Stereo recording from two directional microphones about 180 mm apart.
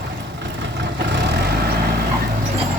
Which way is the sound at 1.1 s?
70° right (ahead or behind).